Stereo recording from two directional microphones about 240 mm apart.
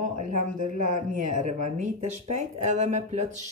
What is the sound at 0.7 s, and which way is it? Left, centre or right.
Speech, right.